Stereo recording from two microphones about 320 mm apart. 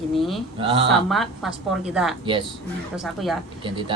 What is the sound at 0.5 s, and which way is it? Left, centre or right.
Speech, centre.